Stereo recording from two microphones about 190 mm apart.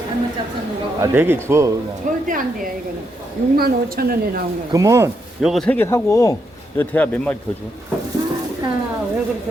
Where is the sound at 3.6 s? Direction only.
55° right (ahead or behind).